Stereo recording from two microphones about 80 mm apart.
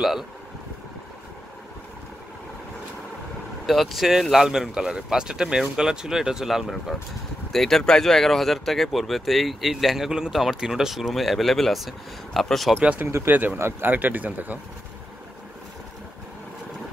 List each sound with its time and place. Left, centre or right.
0.0 s speech: centre
3.6 s speech: centre
12.8 s speech: centre